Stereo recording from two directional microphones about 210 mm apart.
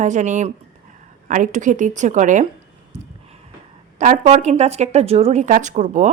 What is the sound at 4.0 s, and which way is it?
Speech, 35° right (ahead or behind).